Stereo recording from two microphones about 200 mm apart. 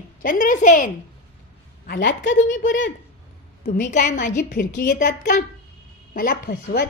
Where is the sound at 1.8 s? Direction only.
60° left (ahead or behind).